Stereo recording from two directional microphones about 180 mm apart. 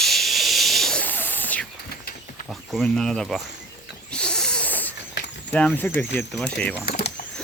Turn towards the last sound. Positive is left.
turn(degrees=65)  # may be behind; listen again after turning